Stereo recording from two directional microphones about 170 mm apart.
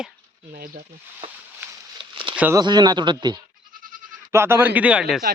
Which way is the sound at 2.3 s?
10° right (ahead or behind).